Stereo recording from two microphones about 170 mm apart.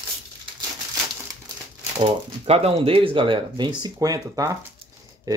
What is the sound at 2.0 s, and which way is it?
Speech, 35° right (ahead or behind).